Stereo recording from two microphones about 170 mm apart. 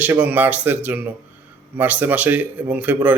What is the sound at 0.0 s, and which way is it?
A man's voice, 10° right (ahead or behind).